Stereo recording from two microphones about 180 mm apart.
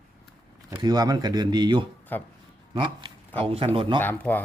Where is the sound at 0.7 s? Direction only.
25° right (ahead or behind).